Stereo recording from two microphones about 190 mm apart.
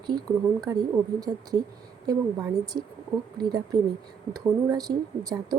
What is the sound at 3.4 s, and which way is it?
A woman's voice, 20° right (ahead or behind).